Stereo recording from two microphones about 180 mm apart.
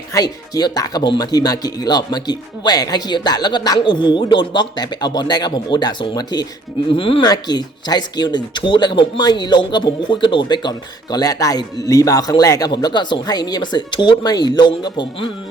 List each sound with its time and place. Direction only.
0.1 s speech: 20° left (ahead or behind)